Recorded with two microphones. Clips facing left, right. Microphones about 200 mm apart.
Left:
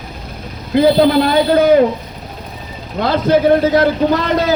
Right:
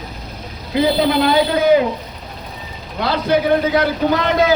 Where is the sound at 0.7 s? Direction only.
50° left (ahead or behind).